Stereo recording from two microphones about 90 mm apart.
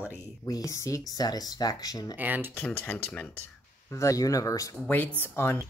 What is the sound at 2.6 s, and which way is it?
Speech, 20° left (ahead or behind).